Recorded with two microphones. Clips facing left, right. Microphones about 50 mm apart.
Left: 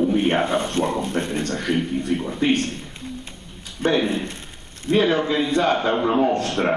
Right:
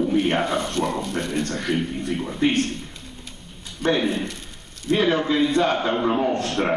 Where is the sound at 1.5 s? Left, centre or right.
Centre.